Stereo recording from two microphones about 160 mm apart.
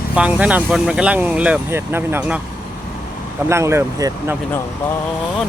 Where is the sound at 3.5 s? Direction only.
15° right (ahead or behind).